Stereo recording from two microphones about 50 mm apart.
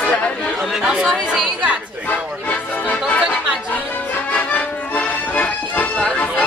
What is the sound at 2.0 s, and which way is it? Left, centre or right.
Music, left.